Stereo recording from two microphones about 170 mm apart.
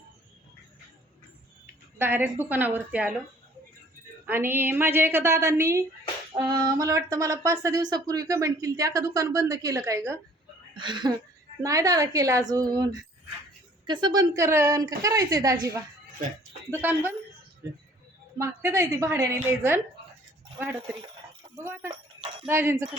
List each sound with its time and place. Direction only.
2.0 s a woman's voice: 10° right (ahead or behind)
4.3 s a woman's voice: 10° right (ahead or behind)
10.8 s a woman's voice: 25° right (ahead or behind)
18.3 s a woman's voice: 15° right (ahead or behind)
21.5 s a woman's voice: 15° right (ahead or behind)